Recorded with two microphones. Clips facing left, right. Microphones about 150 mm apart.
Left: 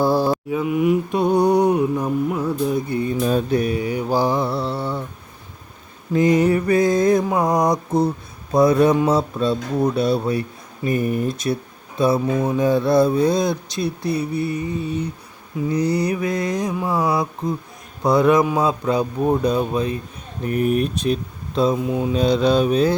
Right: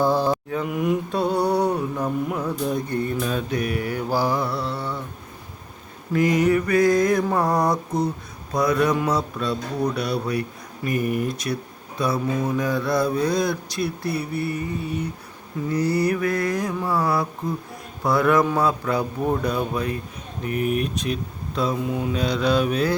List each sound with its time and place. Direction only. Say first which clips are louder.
0.3 s mantra: left 3 dB; 5° left (ahead or behind)
1.1 s mantra: left 5 dB; 15° left (ahead or behind)
3.2 s mantra: left 6 dB; 35° left (ahead or behind)
6.1 s mantra: left 3 dB; 25° left (ahead or behind)
20.4 s mantra: left 4 dB; 40° left (ahead or behind)